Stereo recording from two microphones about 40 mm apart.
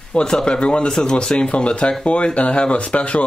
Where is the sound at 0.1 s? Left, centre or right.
Centre.